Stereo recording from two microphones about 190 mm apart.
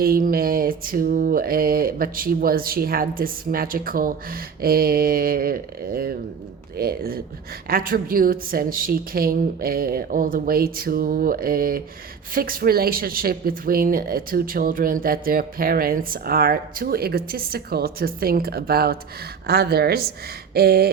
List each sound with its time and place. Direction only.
0.0 s speech: 50° right (ahead or behind)